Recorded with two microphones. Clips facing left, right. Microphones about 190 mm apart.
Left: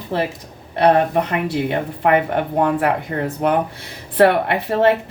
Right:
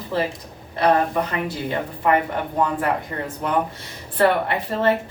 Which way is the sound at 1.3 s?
70° left (ahead or behind).